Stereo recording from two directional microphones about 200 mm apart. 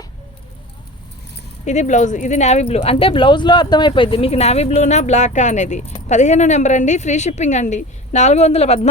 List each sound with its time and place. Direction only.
1.6 s speech: 35° left (ahead or behind)